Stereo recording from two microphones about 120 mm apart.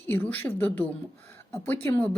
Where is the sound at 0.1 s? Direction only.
15° left (ahead or behind).